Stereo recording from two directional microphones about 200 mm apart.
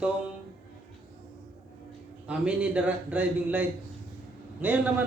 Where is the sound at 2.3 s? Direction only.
5° right (ahead or behind).